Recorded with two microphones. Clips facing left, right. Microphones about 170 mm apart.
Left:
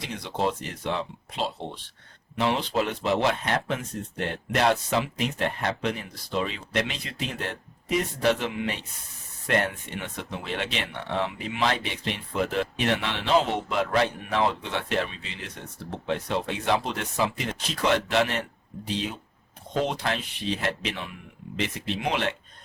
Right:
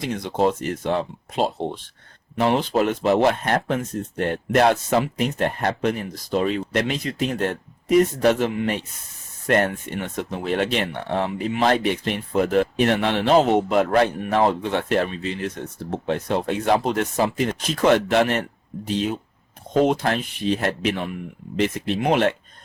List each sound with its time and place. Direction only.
0.0 s speech: 45° right (ahead or behind)